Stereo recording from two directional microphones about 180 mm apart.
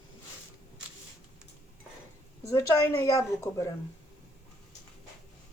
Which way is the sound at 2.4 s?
15° left (ahead or behind).